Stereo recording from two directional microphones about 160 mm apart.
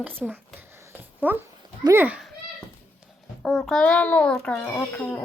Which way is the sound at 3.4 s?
5° left (ahead or behind).